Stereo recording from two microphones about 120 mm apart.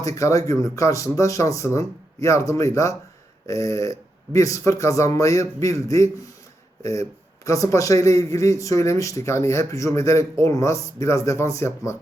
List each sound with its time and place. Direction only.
0.0 s a man's voice: 25° left (ahead or behind)